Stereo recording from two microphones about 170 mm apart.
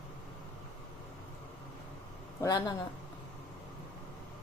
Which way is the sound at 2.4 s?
20° left (ahead or behind).